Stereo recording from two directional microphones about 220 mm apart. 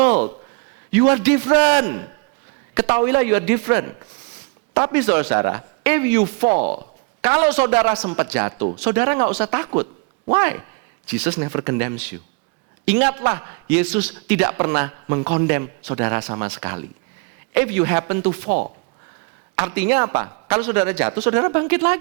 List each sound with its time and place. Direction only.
0.9 s speech: 15° right (ahead or behind)
6.4 s speech: 35° right (ahead or behind)
7.2 s speech: 15° right (ahead or behind)
19.5 s speech: 10° right (ahead or behind)